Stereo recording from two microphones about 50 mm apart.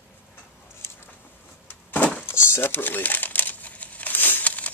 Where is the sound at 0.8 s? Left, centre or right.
Left.